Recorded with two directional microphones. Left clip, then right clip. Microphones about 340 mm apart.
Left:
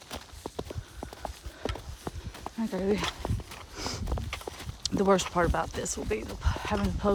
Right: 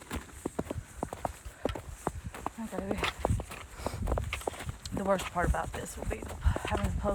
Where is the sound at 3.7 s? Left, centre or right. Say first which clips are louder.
Left 3 dB; left.